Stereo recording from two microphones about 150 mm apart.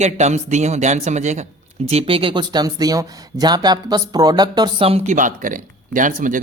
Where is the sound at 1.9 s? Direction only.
40° right (ahead or behind).